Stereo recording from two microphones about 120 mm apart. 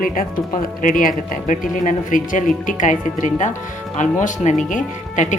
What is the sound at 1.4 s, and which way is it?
Speech, 90° left.